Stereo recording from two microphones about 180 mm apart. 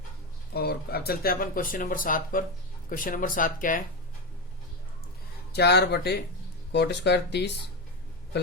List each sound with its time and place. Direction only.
0.5 s speech: 60° left (ahead or behind)
5.5 s speech: 65° left (ahead or behind)